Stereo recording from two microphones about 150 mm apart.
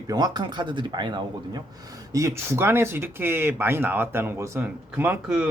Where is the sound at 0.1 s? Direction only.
30° right (ahead or behind).